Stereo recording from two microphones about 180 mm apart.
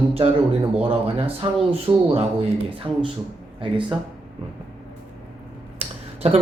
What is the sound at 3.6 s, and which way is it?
Speech, 30° right (ahead or behind).